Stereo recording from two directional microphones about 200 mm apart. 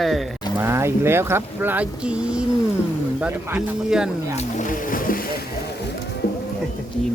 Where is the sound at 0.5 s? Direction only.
10° right (ahead or behind).